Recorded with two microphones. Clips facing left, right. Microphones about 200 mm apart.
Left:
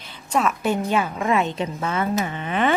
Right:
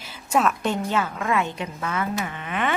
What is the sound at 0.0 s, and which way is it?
A woman's voice, 5° right (ahead or behind).